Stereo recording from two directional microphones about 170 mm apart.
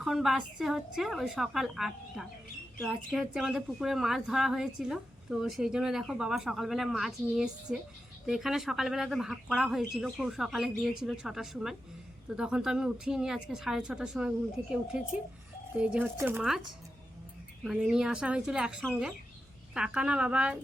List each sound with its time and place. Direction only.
0.0 s a woman's voice: centre (ahead or behind)
17.6 s a woman's voice: centre (ahead or behind)